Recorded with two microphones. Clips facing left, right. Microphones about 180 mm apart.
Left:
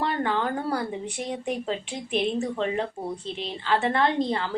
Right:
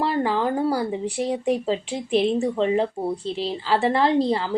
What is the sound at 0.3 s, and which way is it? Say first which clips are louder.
A woman's voice: right 5 dB; 30° right (ahead or behind).